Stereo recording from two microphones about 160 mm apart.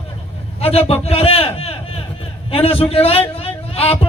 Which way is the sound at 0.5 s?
40° left (ahead or behind).